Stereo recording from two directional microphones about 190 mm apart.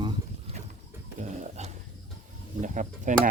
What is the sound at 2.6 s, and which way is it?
Speech, 40° right (ahead or behind).